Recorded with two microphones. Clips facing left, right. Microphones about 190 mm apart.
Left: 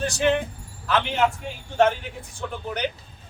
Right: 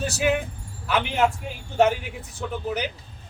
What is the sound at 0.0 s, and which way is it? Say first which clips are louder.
A man's voice: left 1 dB; 5° right (ahead or behind).